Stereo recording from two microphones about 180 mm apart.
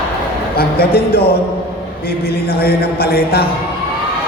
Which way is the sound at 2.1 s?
60° left (ahead or behind).